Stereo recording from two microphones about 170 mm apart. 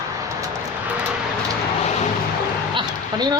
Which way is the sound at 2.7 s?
25° right (ahead or behind).